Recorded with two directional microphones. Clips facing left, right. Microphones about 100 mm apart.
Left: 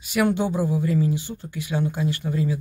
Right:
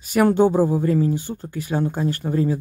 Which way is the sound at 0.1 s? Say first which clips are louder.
Right 6 dB; 40° right (ahead or behind).